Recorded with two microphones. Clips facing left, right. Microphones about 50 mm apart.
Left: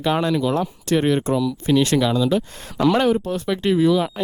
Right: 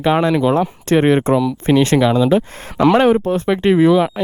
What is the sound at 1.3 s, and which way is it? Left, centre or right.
Speech, right.